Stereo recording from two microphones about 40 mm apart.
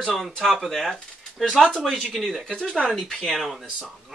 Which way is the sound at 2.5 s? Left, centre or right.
Left.